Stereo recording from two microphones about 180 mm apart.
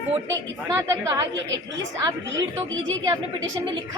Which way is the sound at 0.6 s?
20° right (ahead or behind).